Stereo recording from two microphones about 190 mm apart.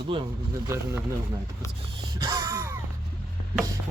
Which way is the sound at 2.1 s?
25° right (ahead or behind).